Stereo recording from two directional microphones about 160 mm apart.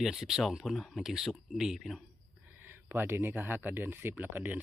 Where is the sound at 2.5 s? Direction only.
15° right (ahead or behind).